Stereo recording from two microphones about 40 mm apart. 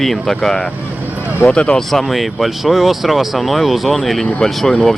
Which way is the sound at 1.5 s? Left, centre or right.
Left.